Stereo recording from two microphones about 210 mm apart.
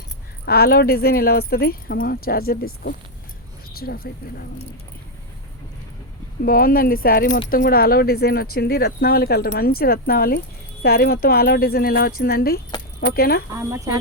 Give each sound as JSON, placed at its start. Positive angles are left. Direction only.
{"t": 0.4, "sound": "speech", "side_deg": 50}
{"t": 3.7, "sound": "speech", "side_deg": 45}
{"t": 6.4, "sound": "speech", "side_deg": 45}
{"t": 13.6, "sound": "speech", "side_deg": -15}